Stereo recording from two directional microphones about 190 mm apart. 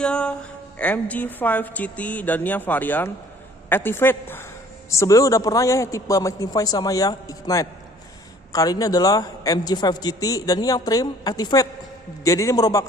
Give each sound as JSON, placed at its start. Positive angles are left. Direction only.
{"t": 0.0, "sound": "a man's voice", "side_deg": 5}